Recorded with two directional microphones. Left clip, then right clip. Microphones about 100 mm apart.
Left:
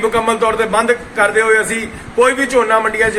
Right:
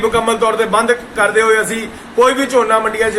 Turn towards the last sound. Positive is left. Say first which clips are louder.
# even
turn(degrees=20)  # may be behind; listen again after turning